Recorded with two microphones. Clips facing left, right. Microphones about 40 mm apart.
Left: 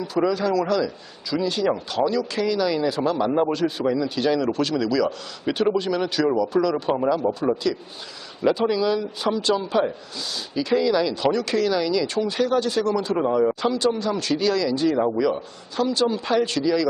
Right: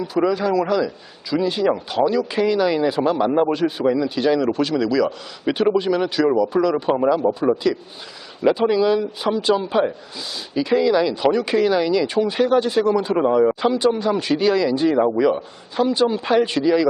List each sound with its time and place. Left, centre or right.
0.0 s a man's voice: centre
7.5 s a man's voice: right